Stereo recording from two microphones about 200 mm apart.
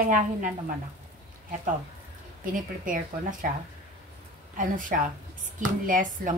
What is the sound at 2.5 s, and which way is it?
Speech, 40° right (ahead or behind).